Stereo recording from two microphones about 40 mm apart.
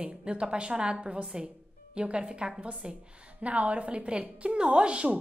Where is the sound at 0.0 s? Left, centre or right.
Right.